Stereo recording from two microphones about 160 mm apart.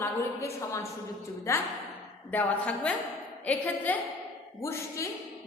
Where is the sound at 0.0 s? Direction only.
20° left (ahead or behind).